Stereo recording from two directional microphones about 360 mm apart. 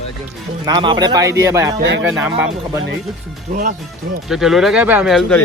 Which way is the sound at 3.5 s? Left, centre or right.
Right.